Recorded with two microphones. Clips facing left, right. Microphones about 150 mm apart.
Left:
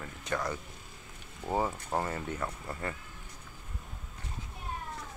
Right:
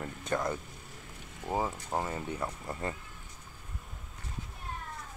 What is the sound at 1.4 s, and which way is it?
Speech, 5° right (ahead or behind).